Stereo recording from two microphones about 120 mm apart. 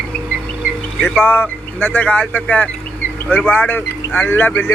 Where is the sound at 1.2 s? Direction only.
15° left (ahead or behind).